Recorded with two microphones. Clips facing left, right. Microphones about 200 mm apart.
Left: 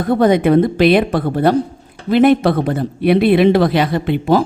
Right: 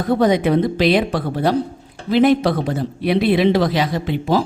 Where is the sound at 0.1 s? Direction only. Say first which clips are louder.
Left 4 dB; 55° left (ahead or behind).